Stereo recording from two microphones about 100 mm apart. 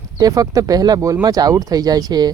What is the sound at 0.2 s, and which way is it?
Speech, 35° right (ahead or behind).